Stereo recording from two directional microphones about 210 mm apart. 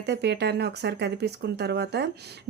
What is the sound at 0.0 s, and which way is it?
Speech, 55° right (ahead or behind).